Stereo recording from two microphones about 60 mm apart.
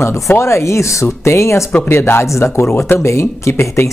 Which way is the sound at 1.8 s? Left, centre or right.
Left.